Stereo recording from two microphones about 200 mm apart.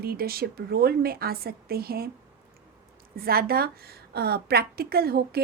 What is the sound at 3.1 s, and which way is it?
Speech, 50° right (ahead or behind).